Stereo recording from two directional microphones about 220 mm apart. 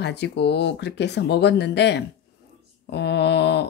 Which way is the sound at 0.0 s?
50° left (ahead or behind).